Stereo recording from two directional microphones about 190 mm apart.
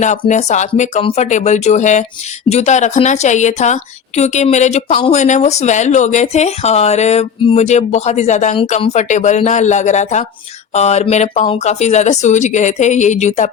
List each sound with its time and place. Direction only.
0.0 s a woman's voice: 40° left (ahead or behind)